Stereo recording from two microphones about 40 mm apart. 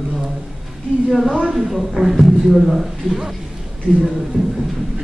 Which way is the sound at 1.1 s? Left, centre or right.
Centre.